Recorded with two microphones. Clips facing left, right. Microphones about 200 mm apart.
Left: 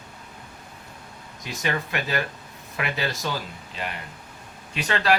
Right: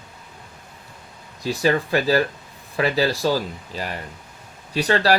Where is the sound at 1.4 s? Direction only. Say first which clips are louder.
Right 8 dB; 35° right (ahead or behind).